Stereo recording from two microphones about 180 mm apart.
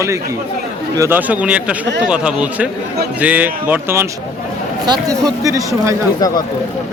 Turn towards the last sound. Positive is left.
turn(degrees=20)  # may be behind; listen again after turning